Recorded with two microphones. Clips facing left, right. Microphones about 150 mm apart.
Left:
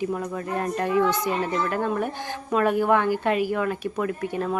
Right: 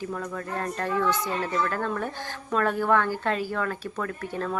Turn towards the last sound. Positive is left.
turn(degrees=15)  # may be behind; listen again after turning